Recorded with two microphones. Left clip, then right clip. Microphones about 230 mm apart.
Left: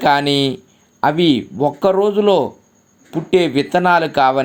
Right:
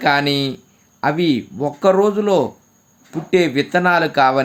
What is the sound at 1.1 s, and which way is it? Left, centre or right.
Speech, centre.